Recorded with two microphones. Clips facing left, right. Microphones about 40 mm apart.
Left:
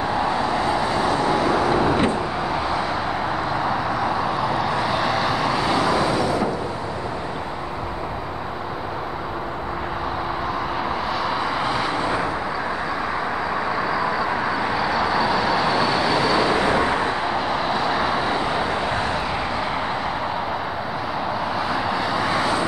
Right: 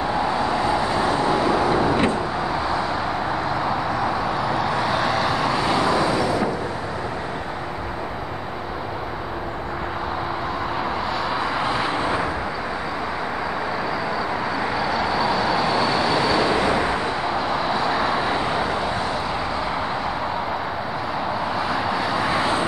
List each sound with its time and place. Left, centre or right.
0.2 s vehicle: centre
1.0 s vehicle: right
1.7 s vehicle: left
4.0 s vehicle: centre
11.6 s vehicle: centre
14.9 s vehicle: centre
21.6 s vehicle: centre